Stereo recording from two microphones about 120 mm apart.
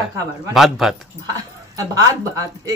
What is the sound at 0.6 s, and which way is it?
Speech, centre (ahead or behind).